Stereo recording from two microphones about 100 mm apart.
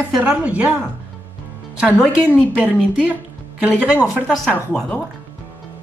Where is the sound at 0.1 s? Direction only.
10° right (ahead or behind).